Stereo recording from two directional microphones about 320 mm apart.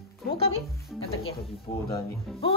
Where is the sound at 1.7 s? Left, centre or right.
Centre.